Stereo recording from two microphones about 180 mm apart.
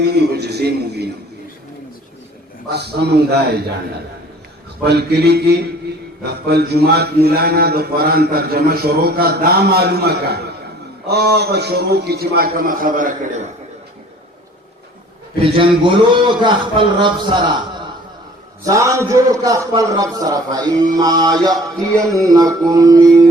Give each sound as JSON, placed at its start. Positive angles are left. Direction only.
{"t": 0.0, "sound": "mantra", "side_deg": -65}
{"t": 2.6, "sound": "mantra", "side_deg": -65}
{"t": 4.8, "sound": "mantra", "side_deg": -65}
{"t": 15.4, "sound": "a man's voice", "side_deg": -30}